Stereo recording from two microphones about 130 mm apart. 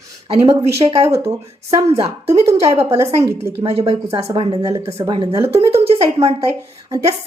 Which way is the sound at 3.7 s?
50° right (ahead or behind).